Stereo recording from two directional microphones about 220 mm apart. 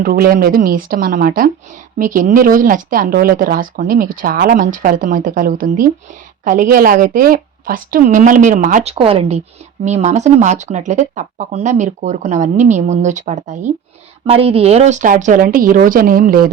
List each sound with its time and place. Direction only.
0.0 s speech: 40° right (ahead or behind)